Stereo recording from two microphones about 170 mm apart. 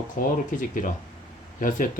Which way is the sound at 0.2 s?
50° left (ahead or behind).